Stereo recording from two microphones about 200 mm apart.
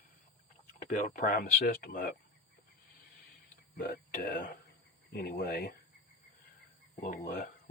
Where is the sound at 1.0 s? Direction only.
45° left (ahead or behind).